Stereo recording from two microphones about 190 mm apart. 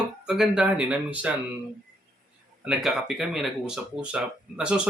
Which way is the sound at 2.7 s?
Centre (ahead or behind).